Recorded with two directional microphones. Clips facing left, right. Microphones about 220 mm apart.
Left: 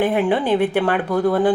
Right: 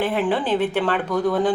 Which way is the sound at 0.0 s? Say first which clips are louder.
Left 3 dB; 15° left (ahead or behind).